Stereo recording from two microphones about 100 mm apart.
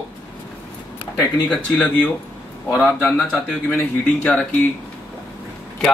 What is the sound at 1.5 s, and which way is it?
Speech, 10° left (ahead or behind).